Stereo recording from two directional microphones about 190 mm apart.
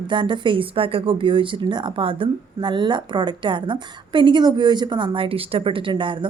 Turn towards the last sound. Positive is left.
turn(degrees=-25)  # may be behind; listen again after turning